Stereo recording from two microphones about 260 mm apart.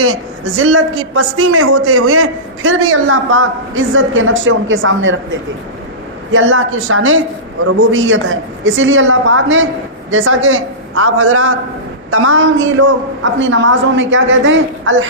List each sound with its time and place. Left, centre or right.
0.6 s a man's voice: right
6.3 s a woman's voice: right